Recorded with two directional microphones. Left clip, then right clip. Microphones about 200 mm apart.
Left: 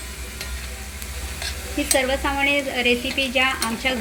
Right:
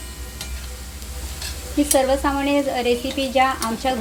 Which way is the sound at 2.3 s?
20° right (ahead or behind).